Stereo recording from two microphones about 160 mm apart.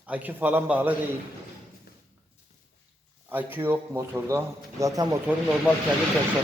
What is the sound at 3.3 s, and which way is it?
Speech, 15° right (ahead or behind).